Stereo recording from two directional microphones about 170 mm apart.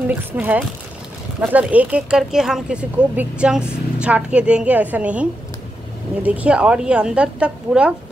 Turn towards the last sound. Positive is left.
turn(degrees=-5)  # may be behind; listen again after turning